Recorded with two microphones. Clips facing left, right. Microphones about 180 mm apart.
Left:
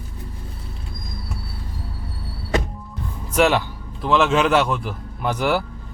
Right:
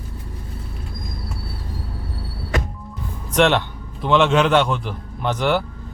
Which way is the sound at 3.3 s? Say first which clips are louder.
Right 1 dB; 5° left (ahead or behind).